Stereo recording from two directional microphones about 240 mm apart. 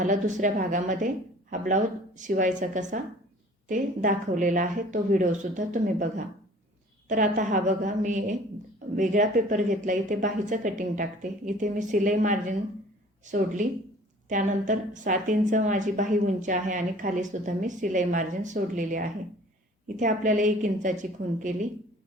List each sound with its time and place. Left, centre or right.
0.0 s a woman's voice: right
13.6 s a woman's voice: right